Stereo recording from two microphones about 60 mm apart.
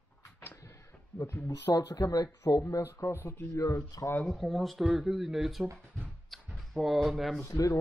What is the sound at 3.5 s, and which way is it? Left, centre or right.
Speech, left.